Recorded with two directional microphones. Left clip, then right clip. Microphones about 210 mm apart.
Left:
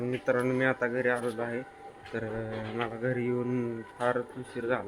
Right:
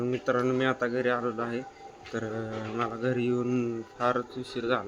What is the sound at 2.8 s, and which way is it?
Speech, 15° right (ahead or behind).